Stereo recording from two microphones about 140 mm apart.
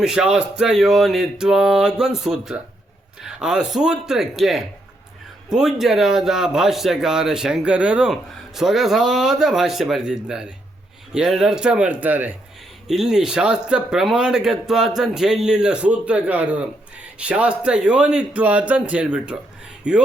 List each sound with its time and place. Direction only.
0.0 s a man's voice: 5° right (ahead or behind)